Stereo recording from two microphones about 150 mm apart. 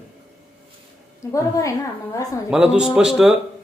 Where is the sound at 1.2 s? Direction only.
20° left (ahead or behind).